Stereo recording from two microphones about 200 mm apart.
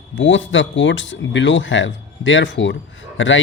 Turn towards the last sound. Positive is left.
turn(degrees=70)  # may be behind; listen again after turning